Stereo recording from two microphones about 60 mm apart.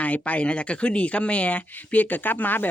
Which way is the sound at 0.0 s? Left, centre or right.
Left.